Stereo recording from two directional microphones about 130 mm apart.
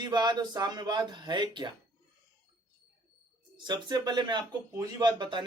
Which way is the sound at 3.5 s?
35° right (ahead or behind).